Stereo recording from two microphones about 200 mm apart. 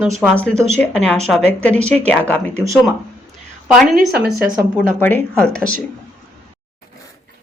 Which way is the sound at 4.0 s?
55° right (ahead or behind).